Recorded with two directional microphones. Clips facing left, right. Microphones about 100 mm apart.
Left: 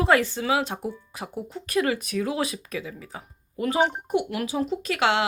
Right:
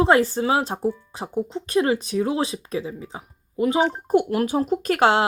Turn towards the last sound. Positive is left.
turn(degrees=-40)  # may be behind; listen again after turning